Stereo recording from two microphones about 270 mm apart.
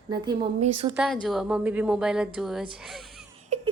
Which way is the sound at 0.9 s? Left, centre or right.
Centre.